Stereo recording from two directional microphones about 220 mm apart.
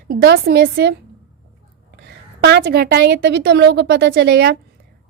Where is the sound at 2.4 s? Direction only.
45° right (ahead or behind).